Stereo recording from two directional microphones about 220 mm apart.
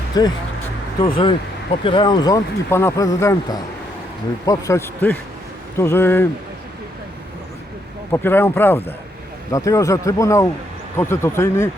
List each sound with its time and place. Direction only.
0.1 s speech: 15° left (ahead or behind)
8.1 s speech: 10° left (ahead or behind)